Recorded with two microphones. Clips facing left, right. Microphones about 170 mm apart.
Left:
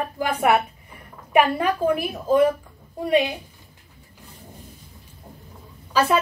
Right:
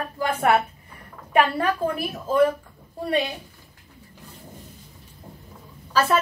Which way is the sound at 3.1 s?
15° left (ahead or behind).